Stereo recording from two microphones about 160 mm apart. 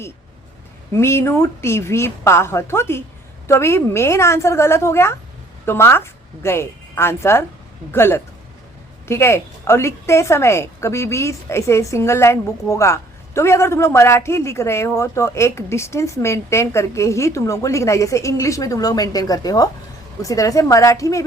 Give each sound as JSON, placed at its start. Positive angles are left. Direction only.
{"t": 0.9, "sound": "a woman's voice", "side_deg": 15}